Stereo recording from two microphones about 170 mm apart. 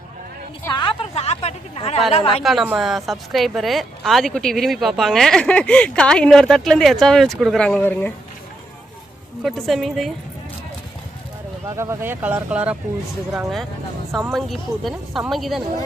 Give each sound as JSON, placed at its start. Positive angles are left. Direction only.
{"t": 0.7, "sound": "a sound", "side_deg": 30}
{"t": 2.1, "sound": "a woman's voice", "side_deg": 35}
{"t": 2.4, "sound": "a woman's voice", "side_deg": 0}
{"t": 9.4, "sound": "a woman's voice", "side_deg": 0}
{"t": 11.8, "sound": "speech", "side_deg": -15}
{"t": 14.3, "sound": "a woman's voice", "side_deg": 0}